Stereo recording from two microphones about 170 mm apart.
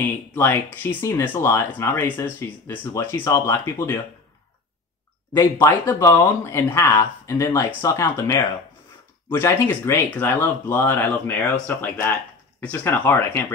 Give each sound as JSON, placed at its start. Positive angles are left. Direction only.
{"t": 0.3, "sound": "speech", "side_deg": 10}
{"t": 5.3, "sound": "speech", "side_deg": 20}